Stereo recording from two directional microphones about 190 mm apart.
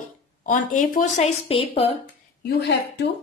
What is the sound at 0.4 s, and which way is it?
A woman's voice, 45° left (ahead or behind).